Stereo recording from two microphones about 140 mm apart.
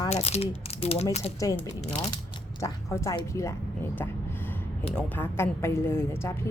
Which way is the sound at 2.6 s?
20° left (ahead or behind).